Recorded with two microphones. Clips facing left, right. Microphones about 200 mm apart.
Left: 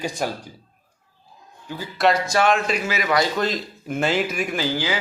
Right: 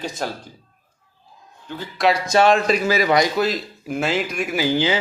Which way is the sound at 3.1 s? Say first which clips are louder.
Right 1 dB; 20° right (ahead or behind).